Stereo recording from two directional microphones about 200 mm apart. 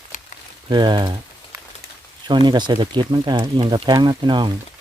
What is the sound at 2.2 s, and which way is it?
Speech, 20° right (ahead or behind).